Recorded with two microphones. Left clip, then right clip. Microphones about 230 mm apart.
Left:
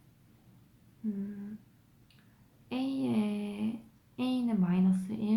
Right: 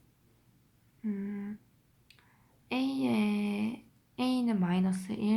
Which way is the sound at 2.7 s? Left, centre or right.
Right.